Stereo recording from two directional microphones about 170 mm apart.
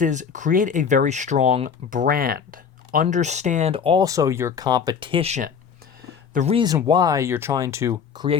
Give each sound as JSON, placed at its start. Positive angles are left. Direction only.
{"t": 0.0, "sound": "speech", "side_deg": -45}
{"t": 4.0, "sound": "speech", "side_deg": -20}
{"t": 6.8, "sound": "speech", "side_deg": -25}